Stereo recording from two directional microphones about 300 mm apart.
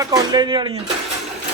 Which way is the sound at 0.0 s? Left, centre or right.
Centre.